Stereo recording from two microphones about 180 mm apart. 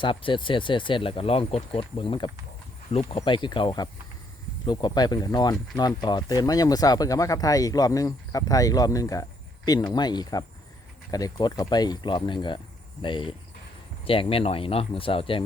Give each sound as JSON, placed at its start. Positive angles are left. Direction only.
{"t": 0.0, "sound": "speech", "side_deg": 30}